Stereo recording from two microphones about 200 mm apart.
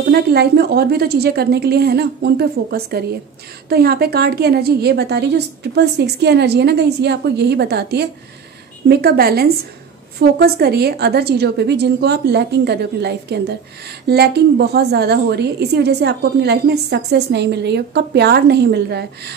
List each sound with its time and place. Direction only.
0.1 s a woman's voice: 55° right (ahead or behind)